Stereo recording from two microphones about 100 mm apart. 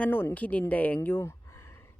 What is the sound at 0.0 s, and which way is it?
A woman's voice, 20° left (ahead or behind).